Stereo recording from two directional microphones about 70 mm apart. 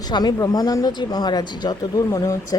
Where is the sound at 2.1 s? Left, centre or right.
Left.